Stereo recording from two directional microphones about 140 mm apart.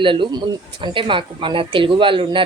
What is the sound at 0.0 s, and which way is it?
Speech, 35° right (ahead or behind).